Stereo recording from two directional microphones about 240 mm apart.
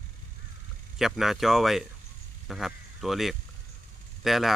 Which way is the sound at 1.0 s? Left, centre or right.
Centre.